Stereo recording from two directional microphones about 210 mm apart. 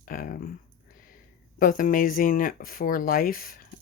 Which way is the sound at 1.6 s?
40° left (ahead or behind).